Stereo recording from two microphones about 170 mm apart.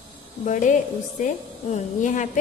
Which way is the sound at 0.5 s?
50° left (ahead or behind).